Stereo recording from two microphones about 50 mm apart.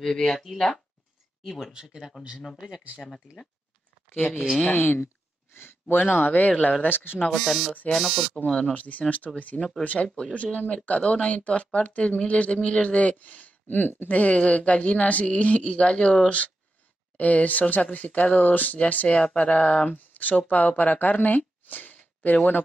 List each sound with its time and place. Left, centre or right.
0.0 s speech: centre
1.8 s speech: centre
4.6 s speech: left
5.0 s a sound: left
5.9 s speech: left
7.2 s speech: centre
8.5 s speech: left
9.1 s speech: left